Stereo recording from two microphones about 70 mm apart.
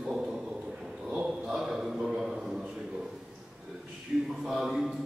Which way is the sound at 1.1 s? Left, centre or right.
Centre.